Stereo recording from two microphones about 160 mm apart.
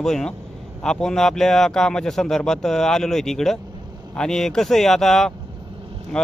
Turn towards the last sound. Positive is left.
turn(degrees=5)  # may be behind; listen again after turning